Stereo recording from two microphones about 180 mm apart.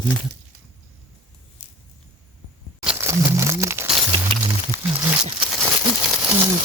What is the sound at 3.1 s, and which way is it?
Crumpling, 15° right (ahead or behind).